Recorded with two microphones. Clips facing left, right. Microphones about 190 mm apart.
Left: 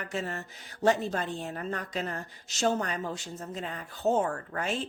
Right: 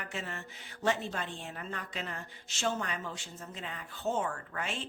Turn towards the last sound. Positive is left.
turn(degrees=40)  # may be behind; listen again after turning